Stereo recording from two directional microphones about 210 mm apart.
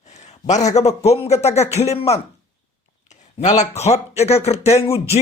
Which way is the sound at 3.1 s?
35° left (ahead or behind).